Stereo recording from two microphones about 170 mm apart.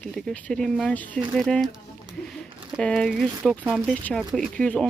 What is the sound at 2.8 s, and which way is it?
Speech, 5° left (ahead or behind).